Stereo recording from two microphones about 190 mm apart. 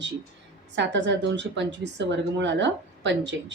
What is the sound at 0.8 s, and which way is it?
A woman's voice, 70° right (ahead or behind).